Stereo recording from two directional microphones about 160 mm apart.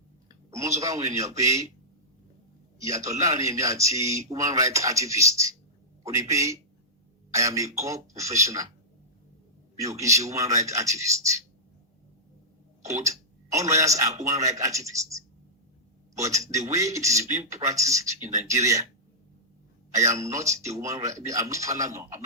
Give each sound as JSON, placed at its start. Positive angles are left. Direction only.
{"t": 0.3, "sound": "a sound", "side_deg": -20}
{"t": 0.8, "sound": "a man's voice", "side_deg": -20}
{"t": 2.7, "sound": "a man's voice", "side_deg": -20}
{"t": 9.8, "sound": "a man's voice", "side_deg": -20}
{"t": 12.8, "sound": "a man's voice", "side_deg": -20}
{"t": 16.4, "sound": "a man's voice", "side_deg": -20}
{"t": 20.1, "sound": "a man's voice", "side_deg": -20}